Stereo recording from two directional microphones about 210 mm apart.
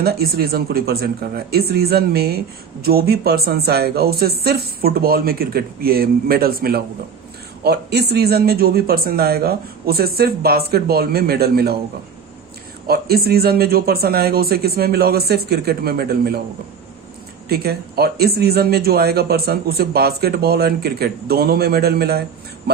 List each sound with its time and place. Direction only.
0.0 s speech: 45° right (ahead or behind)
12.9 s speech: 45° right (ahead or behind)
17.5 s speech: 50° right (ahead or behind)